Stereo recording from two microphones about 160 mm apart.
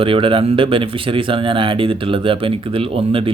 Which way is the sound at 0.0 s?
35° right (ahead or behind).